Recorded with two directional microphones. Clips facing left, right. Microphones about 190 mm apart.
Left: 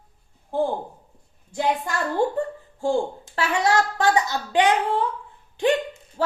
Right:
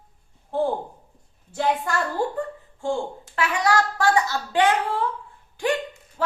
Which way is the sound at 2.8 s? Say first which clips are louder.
Left 3 dB; 35° left (ahead or behind).